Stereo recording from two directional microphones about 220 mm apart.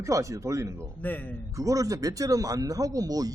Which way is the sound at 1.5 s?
15° right (ahead or behind).